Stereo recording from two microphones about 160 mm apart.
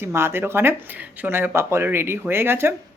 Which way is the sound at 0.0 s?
15° right (ahead or behind).